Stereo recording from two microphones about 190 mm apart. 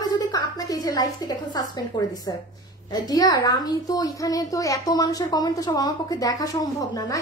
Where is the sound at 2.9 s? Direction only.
20° left (ahead or behind).